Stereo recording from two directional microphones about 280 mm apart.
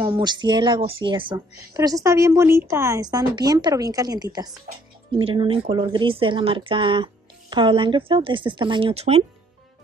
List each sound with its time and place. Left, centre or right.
0.0 s speech: centre